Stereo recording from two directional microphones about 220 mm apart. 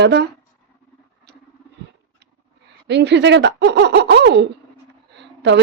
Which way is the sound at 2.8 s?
50° right (ahead or behind).